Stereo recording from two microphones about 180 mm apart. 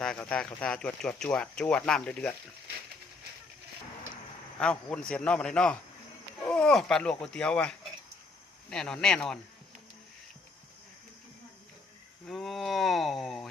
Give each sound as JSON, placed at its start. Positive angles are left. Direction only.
{"t": 0.0, "sound": "speech", "side_deg": 5}
{"t": 4.6, "sound": "speech", "side_deg": 5}
{"t": 12.2, "sound": "speech", "side_deg": 0}